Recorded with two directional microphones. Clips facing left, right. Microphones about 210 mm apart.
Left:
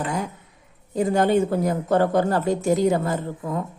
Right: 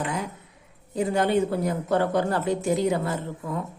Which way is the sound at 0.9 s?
45° left (ahead or behind).